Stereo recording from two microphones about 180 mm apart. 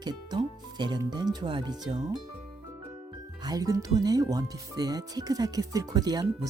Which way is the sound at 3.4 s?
20° right (ahead or behind).